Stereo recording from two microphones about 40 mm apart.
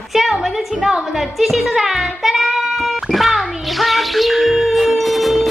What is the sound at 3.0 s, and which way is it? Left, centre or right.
Music, centre.